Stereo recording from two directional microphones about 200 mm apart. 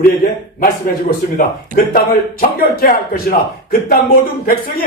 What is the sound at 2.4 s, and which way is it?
Speech, 50° left (ahead or behind).